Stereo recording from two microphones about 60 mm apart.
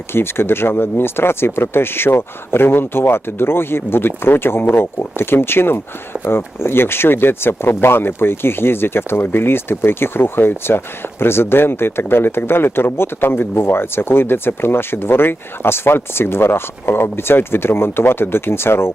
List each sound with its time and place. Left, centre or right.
0.1 s speech: left